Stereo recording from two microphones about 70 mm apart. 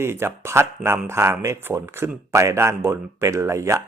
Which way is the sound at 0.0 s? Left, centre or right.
Right.